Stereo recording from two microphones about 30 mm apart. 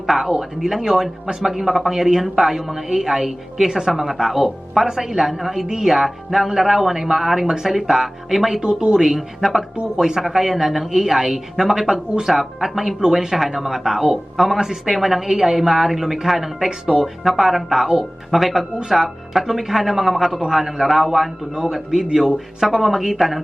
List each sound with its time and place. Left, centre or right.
0.2 s a woman's voice: centre
5.6 s a woman's voice: right
9.1 s a woman's voice: centre